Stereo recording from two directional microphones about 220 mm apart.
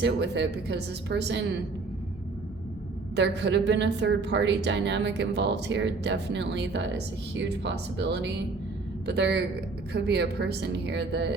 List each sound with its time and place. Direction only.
0.0 s a woman's voice: 50° right (ahead or behind)
3.2 s a woman's voice: 50° right (ahead or behind)